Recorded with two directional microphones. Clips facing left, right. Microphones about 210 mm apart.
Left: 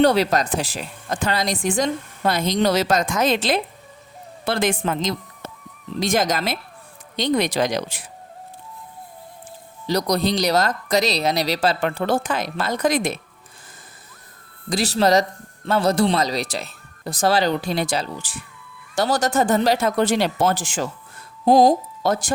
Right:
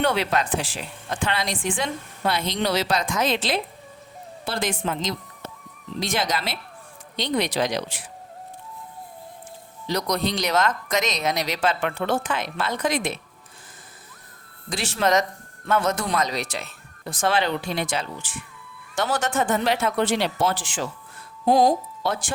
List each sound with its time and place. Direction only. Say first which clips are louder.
0.0 s speech: left 6 dB; 40° left (ahead or behind)
9.8 s speech: left 4 dB; 35° left (ahead or behind)
14.7 s speech: left 4 dB; 40° left (ahead or behind)